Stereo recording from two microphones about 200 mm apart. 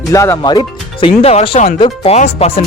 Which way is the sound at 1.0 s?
30° left (ahead or behind).